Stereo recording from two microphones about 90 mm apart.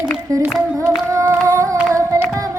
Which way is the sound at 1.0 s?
30° right (ahead or behind).